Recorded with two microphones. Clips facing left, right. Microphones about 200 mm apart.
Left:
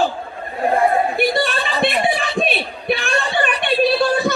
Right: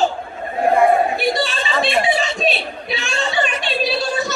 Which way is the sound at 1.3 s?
55° left (ahead or behind).